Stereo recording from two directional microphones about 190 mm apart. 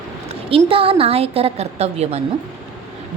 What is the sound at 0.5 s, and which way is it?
A woman's voice, 30° right (ahead or behind).